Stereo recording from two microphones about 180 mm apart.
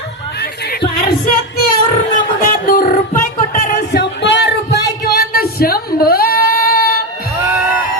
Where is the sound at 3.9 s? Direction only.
75° left (ahead or behind); by 7.0 s 55° left (ahead or behind).